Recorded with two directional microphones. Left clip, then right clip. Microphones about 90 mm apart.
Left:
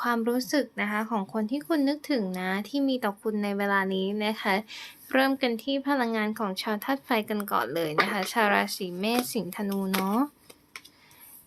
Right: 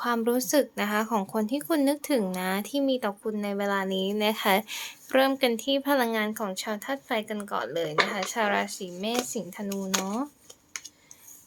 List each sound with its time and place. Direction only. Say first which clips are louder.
0.0 s speech: right 1 dB; centre (ahead or behind)
0.3 s speech: right 3 dB; 15° right (ahead or behind)
2.8 s speech: right 1 dB; 5° left (ahead or behind)
3.2 s speech: left 1 dB; 20° left (ahead or behind); by 4.9 s 15° right (ahead or behind)
5.1 s speech: right 2 dB; centre (ahead or behind)
6.1 s a woman's voice: even; 25° left (ahead or behind)